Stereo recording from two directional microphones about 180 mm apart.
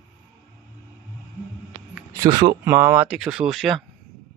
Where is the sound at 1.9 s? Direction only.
15° right (ahead or behind).